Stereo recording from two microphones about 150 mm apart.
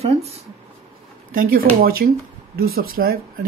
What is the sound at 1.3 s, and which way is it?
Speech, 75° right (ahead or behind).